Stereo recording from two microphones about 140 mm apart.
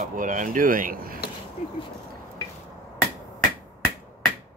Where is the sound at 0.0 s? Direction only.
70° right (ahead or behind); by 1.2 s 90° right.